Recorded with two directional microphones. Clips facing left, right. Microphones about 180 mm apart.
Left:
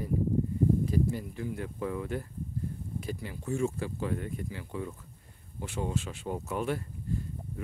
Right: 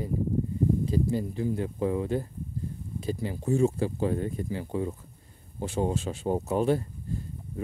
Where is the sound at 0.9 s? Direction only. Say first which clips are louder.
Right 3 dB; 30° right (ahead or behind).